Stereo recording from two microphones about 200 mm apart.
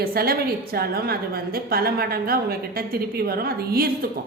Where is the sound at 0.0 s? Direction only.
50° right (ahead or behind).